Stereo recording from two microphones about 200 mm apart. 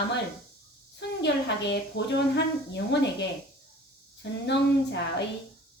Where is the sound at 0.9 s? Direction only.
60° left (ahead or behind).